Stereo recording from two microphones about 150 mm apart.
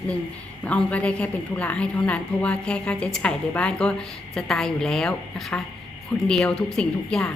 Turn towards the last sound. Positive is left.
turn(degrees=5)  # may be behind; listen again after turning